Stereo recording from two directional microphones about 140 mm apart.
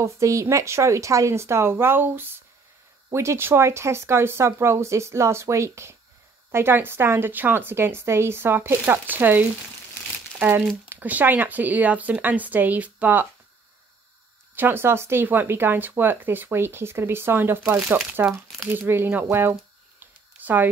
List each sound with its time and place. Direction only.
0.0 s speech: 20° right (ahead or behind)
10.9 s speech: 10° right (ahead or behind)
14.5 s speech: 15° right (ahead or behind)